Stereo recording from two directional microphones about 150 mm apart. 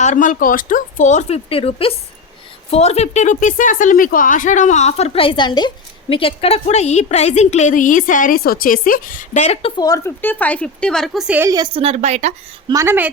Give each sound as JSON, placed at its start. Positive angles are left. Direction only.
{"t": 0.0, "sound": "speech", "side_deg": 55}
{"t": 9.8, "sound": "speech", "side_deg": 25}
{"t": 10.2, "sound": "speech", "side_deg": 10}
{"t": 11.4, "sound": "a woman's voice", "side_deg": -25}
{"t": 11.7, "sound": "speech", "side_deg": -45}
{"t": 12.6, "sound": "a woman's voice", "side_deg": -20}